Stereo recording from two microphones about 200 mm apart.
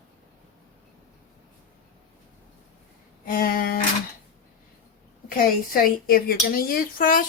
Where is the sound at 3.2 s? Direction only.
45° left (ahead or behind).